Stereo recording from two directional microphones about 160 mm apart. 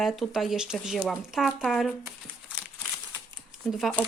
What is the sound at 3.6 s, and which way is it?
Speech, centre (ahead or behind).